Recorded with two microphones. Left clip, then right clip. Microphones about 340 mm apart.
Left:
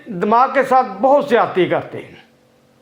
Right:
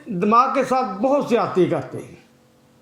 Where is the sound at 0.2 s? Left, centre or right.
Left.